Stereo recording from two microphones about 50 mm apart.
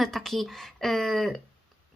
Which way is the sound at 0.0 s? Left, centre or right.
Centre.